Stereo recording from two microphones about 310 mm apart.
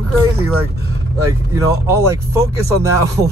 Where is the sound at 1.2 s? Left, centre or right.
Centre.